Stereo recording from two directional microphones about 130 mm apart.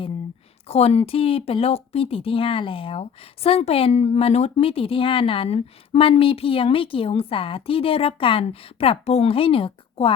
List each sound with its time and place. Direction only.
0.7 s speech: 50° left (ahead or behind)